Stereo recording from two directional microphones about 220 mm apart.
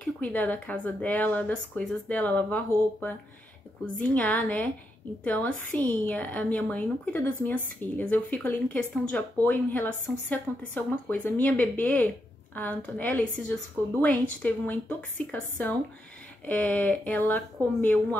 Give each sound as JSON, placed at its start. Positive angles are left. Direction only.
{"t": 0.0, "sound": "a woman's voice", "side_deg": 5}